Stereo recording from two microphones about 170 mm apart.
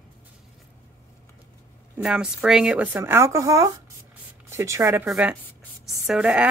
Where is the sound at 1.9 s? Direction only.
5° right (ahead or behind).